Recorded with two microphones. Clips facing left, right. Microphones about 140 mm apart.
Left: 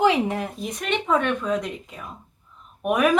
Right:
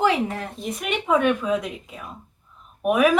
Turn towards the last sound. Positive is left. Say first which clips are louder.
# right 1 dB
turn(degrees=0)  # may be behind; listen again after turning